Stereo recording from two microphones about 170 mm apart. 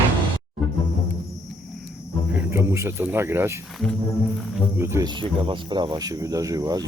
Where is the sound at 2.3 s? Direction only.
15° right (ahead or behind).